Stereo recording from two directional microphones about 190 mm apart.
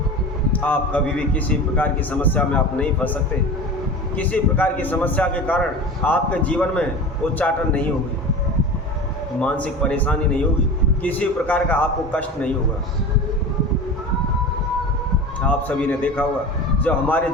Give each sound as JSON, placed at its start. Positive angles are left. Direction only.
{"t": 0.5, "sound": "a man's voice", "side_deg": 10}
{"t": 4.2, "sound": "a man's voice", "side_deg": 10}
{"t": 9.4, "sound": "a man's voice", "side_deg": 5}
{"t": 15.4, "sound": "a man's voice", "side_deg": 10}